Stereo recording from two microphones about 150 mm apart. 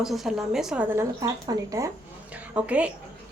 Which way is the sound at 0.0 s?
Centre (ahead or behind).